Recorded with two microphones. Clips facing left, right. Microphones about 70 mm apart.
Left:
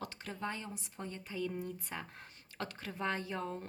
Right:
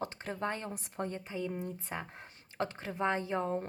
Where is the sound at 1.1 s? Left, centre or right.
Right.